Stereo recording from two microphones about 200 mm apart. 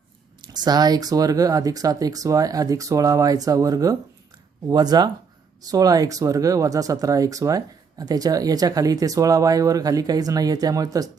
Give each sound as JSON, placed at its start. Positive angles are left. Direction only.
{"t": 0.4, "sound": "speech", "side_deg": -20}